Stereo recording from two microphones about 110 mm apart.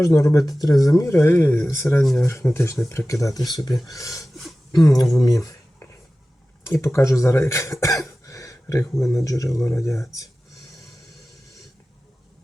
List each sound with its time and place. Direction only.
0.1 s speech: 25° left (ahead or behind)
5.1 s writing: 30° left (ahead or behind)
6.7 s speech: 25° left (ahead or behind)